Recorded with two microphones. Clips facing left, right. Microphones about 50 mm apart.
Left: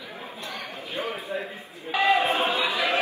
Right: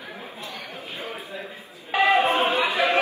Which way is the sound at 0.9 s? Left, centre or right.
Left.